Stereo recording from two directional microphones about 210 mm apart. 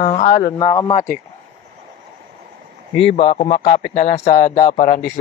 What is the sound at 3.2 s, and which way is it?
A man's voice, 25° left (ahead or behind).